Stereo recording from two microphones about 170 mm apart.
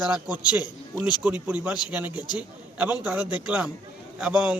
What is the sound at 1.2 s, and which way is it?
A man's voice, 10° right (ahead or behind).